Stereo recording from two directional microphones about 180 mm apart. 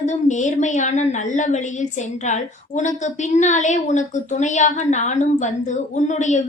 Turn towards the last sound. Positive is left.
turn(degrees=45)  # may be behind; listen again after turning